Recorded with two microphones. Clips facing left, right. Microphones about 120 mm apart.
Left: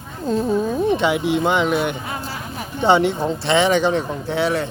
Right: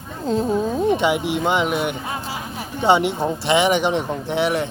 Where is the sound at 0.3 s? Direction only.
15° right (ahead or behind).